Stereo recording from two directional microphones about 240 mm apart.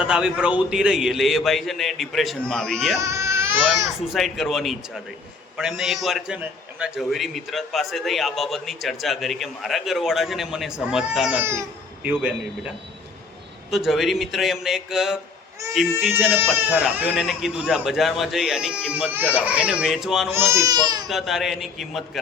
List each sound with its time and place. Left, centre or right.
0.0 s a man's voice: centre
3.0 s baby cry: centre
3.8 s a man's voice: centre
13.7 s a man's voice: centre
20.5 s speech: centre
21.1 s a man's voice: centre